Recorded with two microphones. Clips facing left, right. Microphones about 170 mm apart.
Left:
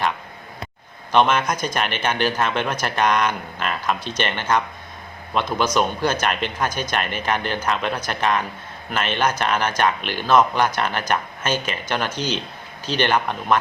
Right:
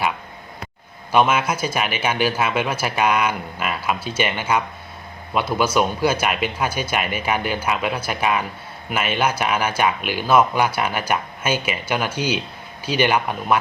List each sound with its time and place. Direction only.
1.1 s speech: 5° right (ahead or behind)